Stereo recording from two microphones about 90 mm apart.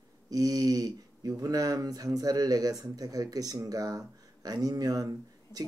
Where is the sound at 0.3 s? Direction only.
45° right (ahead or behind).